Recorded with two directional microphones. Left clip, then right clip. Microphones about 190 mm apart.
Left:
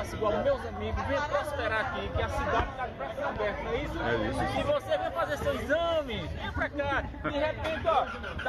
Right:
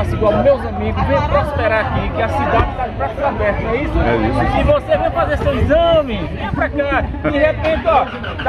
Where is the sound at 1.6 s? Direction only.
10° left (ahead or behind).